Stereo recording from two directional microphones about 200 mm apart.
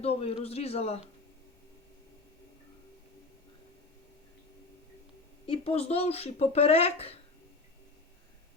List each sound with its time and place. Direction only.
0.0 s speech: 30° left (ahead or behind)
5.5 s speech: 30° left (ahead or behind)